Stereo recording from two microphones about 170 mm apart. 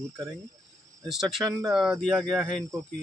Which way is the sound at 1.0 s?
Centre (ahead or behind).